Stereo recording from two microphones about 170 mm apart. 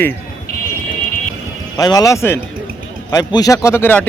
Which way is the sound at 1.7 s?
20° left (ahead or behind).